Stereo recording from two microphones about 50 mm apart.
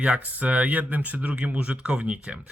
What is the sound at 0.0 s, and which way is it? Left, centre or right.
Speech, right.